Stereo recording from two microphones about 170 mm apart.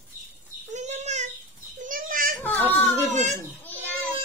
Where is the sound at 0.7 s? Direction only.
45° right (ahead or behind).